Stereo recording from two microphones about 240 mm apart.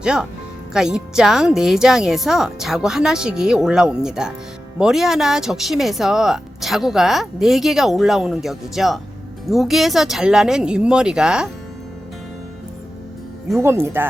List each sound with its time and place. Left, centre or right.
0.0 s speech: centre
13.6 s speech: centre